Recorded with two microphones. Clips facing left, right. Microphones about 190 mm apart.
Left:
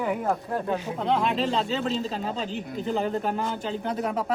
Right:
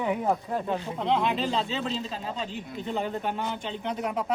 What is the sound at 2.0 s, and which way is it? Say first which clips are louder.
Speech: left 4 dB; 35° left (ahead or behind).